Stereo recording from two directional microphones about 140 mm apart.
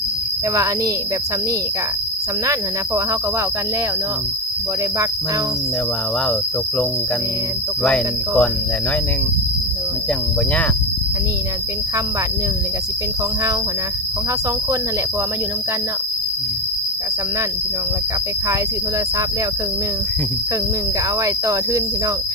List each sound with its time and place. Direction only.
7.9 s cricket: 5° left (ahead or behind)
21.2 s speech: 25° right (ahead or behind)